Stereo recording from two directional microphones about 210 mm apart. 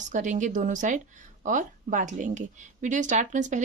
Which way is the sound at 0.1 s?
35° right (ahead or behind).